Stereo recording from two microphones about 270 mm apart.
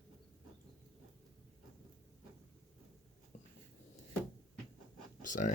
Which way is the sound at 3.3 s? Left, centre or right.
Left.